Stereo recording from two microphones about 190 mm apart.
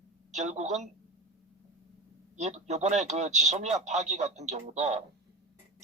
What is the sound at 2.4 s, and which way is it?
A man's voice, 35° right (ahead or behind).